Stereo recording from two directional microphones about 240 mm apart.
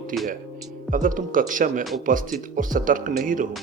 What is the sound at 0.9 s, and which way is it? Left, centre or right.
Speech, right.